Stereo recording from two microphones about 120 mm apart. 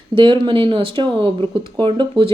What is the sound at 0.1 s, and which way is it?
A woman's voice, 45° right (ahead or behind).